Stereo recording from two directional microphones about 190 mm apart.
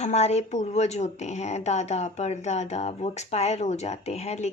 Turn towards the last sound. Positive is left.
turn(degrees=35)  # may be behind; listen again after turning